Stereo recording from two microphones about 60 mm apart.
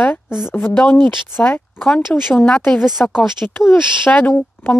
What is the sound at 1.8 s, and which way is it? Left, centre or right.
Speech, centre.